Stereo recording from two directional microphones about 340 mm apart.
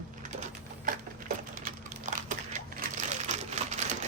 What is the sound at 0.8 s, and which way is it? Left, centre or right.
Typewriter, right.